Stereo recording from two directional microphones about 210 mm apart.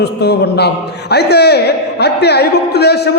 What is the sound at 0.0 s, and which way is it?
A man's voice, 50° left (ahead or behind).